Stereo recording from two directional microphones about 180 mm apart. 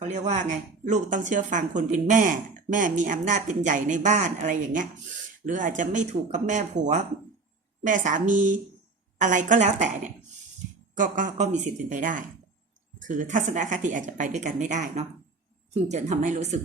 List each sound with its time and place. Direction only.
0.0 s a woman's voice: 40° right (ahead or behind)